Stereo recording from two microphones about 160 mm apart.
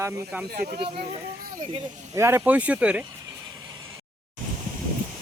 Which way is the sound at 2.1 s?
15° right (ahead or behind).